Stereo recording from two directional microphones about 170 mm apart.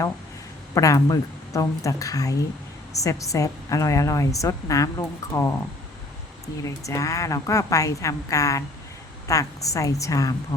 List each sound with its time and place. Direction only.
0.7 s a woman's voice: 20° left (ahead or behind)
6.7 s a woman's voice: 20° left (ahead or behind)